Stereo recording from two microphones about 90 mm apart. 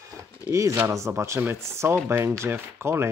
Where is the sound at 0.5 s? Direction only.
30° right (ahead or behind).